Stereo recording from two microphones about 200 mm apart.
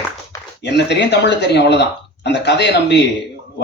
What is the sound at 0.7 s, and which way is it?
A man's voice, 60° left (ahead or behind).